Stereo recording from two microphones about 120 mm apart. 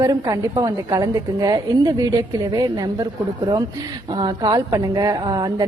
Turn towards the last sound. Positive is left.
turn(degrees=-40)  # may be behind; listen again after turning